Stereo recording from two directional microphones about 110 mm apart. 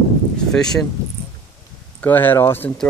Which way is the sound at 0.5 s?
5° left (ahead or behind).